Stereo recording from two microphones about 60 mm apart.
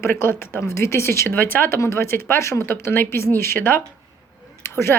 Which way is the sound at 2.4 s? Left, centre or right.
Left.